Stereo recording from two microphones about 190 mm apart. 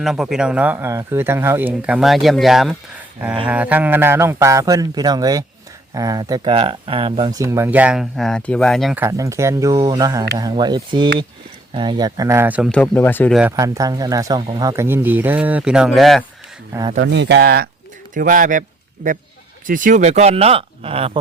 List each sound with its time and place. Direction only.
0.0 s speech: centre (ahead or behind)
9.0 s speech: 15° right (ahead or behind)
12.7 s speech: 10° left (ahead or behind)
13.6 s speech: 15° right (ahead or behind); by 16.2 s centre (ahead or behind)
17.0 s speech: 65° right (ahead or behind)
18.1 s speech: 45° right (ahead or behind)
19.6 s speech: 45° right (ahead or behind)